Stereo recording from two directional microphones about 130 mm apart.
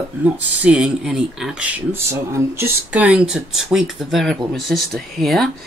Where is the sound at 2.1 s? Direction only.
20° right (ahead or behind).